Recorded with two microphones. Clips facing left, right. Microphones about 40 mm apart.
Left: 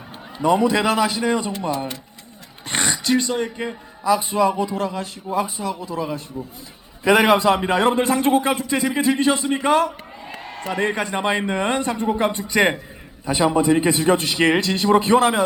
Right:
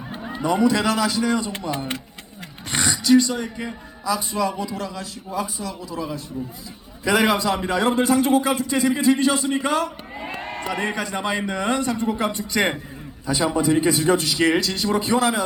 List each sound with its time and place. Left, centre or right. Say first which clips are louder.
0.4 s a man's voice: left 2 dB; centre
2.6 s gasp: right 2 dB; left
4.0 s a man's voice: left 5 dB; left
10.2 s a sound: right 4 dB; right
10.7 s a man's voice: left 4 dB; centre
13.3 s a man's voice: left 3 dB; left